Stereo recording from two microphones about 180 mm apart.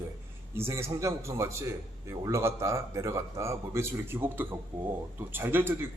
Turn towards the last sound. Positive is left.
turn(degrees=-10)  # may be behind; listen again after turning